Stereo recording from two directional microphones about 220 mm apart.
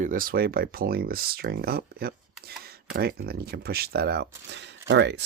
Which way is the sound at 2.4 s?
45° right (ahead or behind).